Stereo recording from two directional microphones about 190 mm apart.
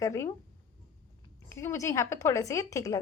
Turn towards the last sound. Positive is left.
turn(degrees=15)  # may be behind; listen again after turning